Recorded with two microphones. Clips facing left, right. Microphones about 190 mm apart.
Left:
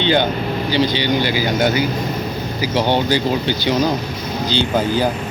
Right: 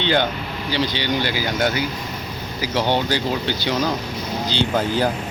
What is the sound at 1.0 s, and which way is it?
Speech, centre (ahead or behind).